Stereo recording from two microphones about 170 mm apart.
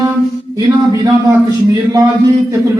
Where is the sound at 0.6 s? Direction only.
20° right (ahead or behind).